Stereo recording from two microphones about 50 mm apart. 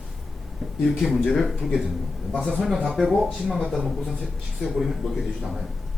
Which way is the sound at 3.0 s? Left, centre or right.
Centre.